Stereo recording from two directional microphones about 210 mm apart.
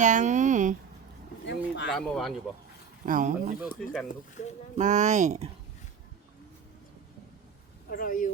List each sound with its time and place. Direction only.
0.0 s speech: 35° right (ahead or behind)
1.5 s speech: 55° left (ahead or behind)
1.9 s speech: centre (ahead or behind)
3.1 s speech: 40° right (ahead or behind)
4.8 s speech: 35° right (ahead or behind)
7.9 s speech: 40° left (ahead or behind)